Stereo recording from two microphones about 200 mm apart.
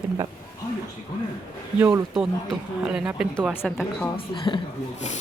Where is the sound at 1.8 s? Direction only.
5° right (ahead or behind).